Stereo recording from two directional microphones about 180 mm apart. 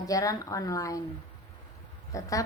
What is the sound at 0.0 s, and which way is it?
A woman's voice, 20° left (ahead or behind).